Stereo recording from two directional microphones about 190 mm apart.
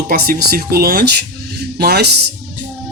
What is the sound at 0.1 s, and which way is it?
Speech, 50° right (ahead or behind).